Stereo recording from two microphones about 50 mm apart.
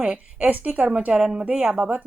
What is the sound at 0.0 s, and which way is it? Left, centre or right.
A woman's voice, right.